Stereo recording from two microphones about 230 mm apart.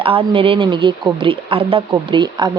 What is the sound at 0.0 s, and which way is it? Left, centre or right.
Speech, right.